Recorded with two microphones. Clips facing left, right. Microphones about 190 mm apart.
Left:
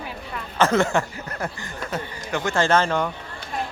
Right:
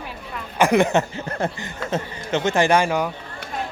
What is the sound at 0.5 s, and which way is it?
Speech, 15° right (ahead or behind).